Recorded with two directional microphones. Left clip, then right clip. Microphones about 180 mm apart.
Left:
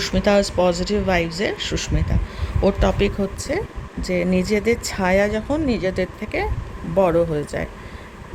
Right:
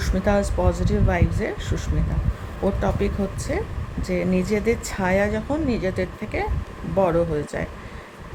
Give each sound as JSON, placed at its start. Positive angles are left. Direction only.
{"t": 0.0, "sound": "speech", "side_deg": 25}